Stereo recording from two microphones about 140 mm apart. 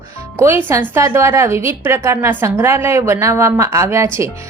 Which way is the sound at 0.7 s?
20° right (ahead or behind).